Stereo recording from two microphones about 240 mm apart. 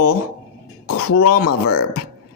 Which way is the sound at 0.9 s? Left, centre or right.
Left.